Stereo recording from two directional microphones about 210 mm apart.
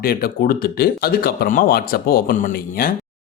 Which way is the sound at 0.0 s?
45° left (ahead or behind).